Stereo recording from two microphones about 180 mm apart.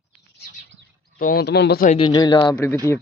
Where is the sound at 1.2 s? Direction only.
55° left (ahead or behind).